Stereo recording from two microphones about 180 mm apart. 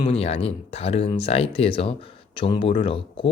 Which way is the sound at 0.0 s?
35° left (ahead or behind).